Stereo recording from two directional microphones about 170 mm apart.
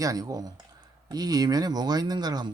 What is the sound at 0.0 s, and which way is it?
Speech, 20° right (ahead or behind).